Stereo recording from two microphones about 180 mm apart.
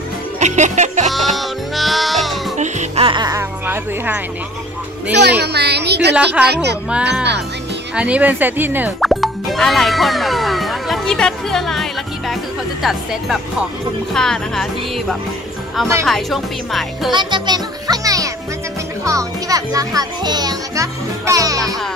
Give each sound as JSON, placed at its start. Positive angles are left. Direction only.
{"t": 0.4, "sound": "music", "side_deg": -40}
{"t": 1.1, "sound": "music", "side_deg": 0}
{"t": 2.5, "sound": "music", "side_deg": -40}
{"t": 3.1, "sound": "speech", "side_deg": -20}
{"t": 5.1, "sound": "speech", "side_deg": -65}
{"t": 6.9, "sound": "speech", "side_deg": -5}
{"t": 9.0, "sound": "music", "side_deg": 0}
{"t": 12.8, "sound": "speech", "side_deg": 0}
{"t": 17.1, "sound": "a child's voice", "side_deg": -25}